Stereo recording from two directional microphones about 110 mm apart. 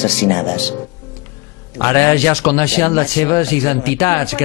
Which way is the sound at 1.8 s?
30° left (ahead or behind).